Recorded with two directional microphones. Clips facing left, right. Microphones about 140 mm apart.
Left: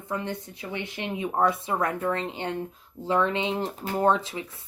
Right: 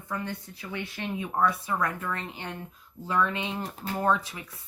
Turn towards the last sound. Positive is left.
turn(degrees=25)  # may be behind; listen again after turning